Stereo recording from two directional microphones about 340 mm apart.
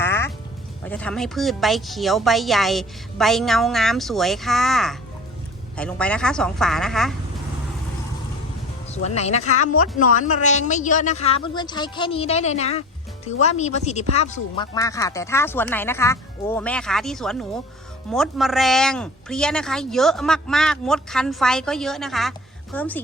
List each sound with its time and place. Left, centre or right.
0.0 s music: centre
0.9 s speech: centre
8.9 s a man's voice: centre